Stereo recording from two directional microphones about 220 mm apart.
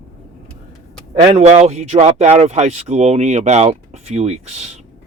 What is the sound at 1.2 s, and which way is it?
Speech, 30° right (ahead or behind).